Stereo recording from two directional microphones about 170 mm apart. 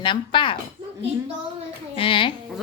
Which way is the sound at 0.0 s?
30° left (ahead or behind).